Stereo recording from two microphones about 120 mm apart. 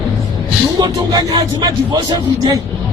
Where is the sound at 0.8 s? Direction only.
35° right (ahead or behind).